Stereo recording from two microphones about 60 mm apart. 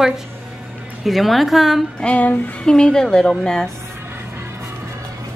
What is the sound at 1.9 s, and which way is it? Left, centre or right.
A woman's voice, centre.